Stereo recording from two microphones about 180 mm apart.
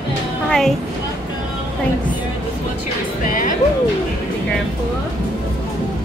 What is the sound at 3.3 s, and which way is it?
Music, 50° left (ahead or behind).